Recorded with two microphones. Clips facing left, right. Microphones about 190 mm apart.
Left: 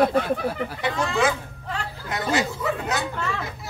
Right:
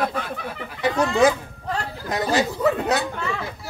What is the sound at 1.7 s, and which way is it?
Speech, 35° right (ahead or behind).